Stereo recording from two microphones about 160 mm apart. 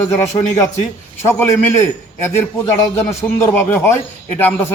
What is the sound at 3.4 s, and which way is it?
A man's voice, 15° left (ahead or behind).